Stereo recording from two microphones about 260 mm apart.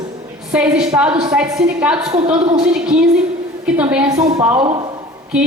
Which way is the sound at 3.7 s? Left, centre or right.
Centre.